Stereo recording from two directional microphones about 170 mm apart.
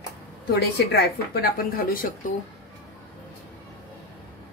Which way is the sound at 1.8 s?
55° left (ahead or behind).